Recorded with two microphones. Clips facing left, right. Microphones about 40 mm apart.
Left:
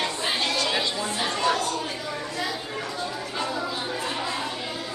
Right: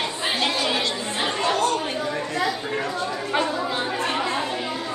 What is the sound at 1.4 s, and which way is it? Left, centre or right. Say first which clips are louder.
Chatter: right 3 dB; right.